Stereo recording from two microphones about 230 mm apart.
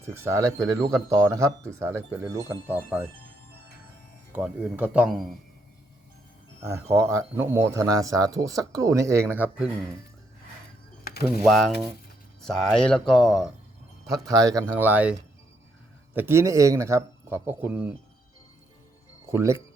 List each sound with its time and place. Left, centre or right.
0.0 s speech: centre
4.3 s speech: centre
6.6 s speech: centre
11.0 s a sound: left
11.3 s speech: centre
14.1 s speech: centre
19.3 s speech: centre